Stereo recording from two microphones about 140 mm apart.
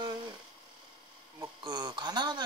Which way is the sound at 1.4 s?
25° right (ahead or behind).